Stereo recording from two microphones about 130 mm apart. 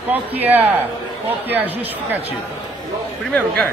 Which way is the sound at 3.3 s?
10° left (ahead or behind).